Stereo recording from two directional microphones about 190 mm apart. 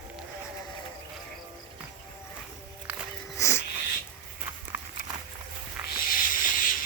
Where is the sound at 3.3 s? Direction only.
15° left (ahead or behind).